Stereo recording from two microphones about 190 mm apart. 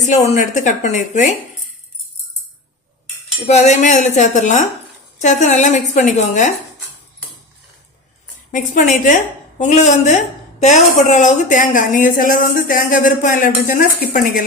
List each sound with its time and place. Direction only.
0.0 s speech: 40° left (ahead or behind)
3.4 s speech: 35° left (ahead or behind)
8.5 s a woman's voice: 40° left (ahead or behind)